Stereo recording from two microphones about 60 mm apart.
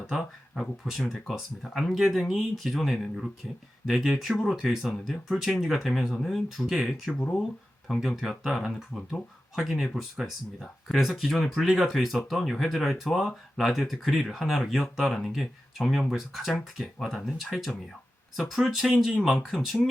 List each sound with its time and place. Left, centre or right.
0.1 s speech: centre
7.1 s speech: left
8.0 s speech: centre